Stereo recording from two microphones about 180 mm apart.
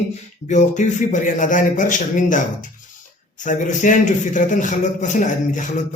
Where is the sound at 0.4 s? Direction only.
40° left (ahead or behind).